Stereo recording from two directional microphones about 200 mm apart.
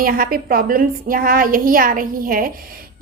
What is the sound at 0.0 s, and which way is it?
A woman's voice, 45° right (ahead or behind).